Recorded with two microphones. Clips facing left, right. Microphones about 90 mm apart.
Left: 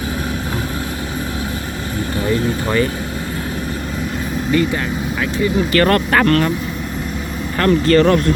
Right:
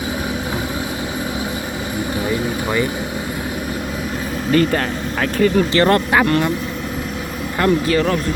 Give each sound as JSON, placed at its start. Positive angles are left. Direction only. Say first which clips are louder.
{"t": 2.2, "sound": "vehicle", "louder": "left 5 dB", "side_deg": -10}
{"t": 5.2, "sound": "speech", "louder": "right 3 dB", "side_deg": -50}
{"t": 5.7, "sound": "speech", "louder": "even", "side_deg": -20}
{"t": 6.1, "sound": "speech", "louder": "left 2 dB", "side_deg": -10}
{"t": 7.6, "sound": "speech", "louder": "left 4 dB", "side_deg": -5}